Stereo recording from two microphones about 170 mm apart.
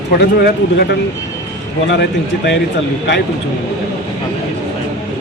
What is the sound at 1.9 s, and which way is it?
Speech, 85° left.